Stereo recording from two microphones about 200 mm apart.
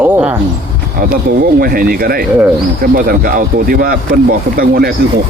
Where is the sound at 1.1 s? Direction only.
50° right (ahead or behind).